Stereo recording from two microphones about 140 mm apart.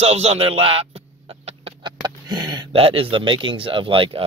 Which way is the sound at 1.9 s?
30° right (ahead or behind).